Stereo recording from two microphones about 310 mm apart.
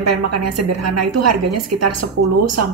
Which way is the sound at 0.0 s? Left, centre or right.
Right.